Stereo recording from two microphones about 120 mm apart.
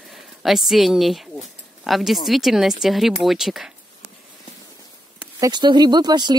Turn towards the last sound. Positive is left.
turn(degrees=-35)  # may be behind; listen again after turning